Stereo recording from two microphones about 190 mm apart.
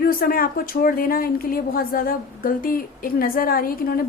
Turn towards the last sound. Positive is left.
turn(degrees=50)  # may be behind; listen again after turning